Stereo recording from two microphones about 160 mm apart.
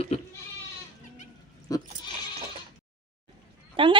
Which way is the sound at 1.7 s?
20° left (ahead or behind).